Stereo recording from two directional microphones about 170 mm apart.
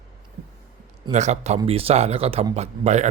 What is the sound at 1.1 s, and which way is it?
Speech, 40° right (ahead or behind).